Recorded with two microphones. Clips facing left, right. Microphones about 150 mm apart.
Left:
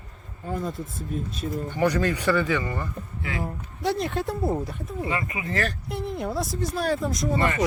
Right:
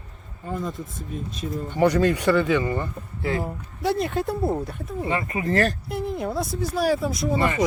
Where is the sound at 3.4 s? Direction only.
Centre (ahead or behind).